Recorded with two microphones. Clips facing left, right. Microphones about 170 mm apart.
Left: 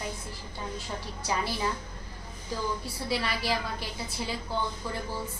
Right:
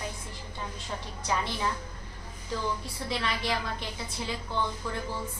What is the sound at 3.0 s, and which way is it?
Speech, 5° left (ahead or behind).